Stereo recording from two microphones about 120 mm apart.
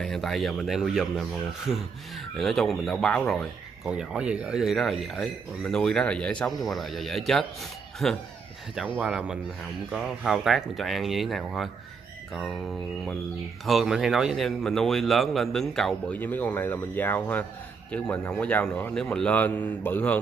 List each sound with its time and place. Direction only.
0.0 s speech: 5° left (ahead or behind)
2.3 s speech: centre (ahead or behind)
8.7 s speech: 10° right (ahead or behind); by 16.2 s 5° left (ahead or behind)
16.2 s a man's voice: 15° left (ahead or behind)